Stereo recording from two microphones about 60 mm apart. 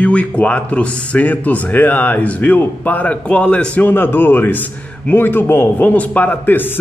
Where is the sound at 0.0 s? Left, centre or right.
Left.